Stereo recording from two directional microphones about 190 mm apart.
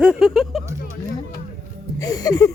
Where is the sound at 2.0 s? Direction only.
20° left (ahead or behind).